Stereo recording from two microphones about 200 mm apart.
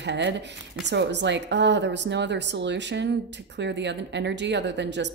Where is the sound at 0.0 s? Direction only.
60° right (ahead or behind).